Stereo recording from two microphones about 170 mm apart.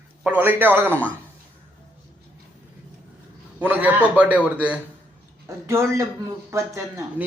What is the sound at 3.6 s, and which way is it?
A man's voice, 10° right (ahead or behind).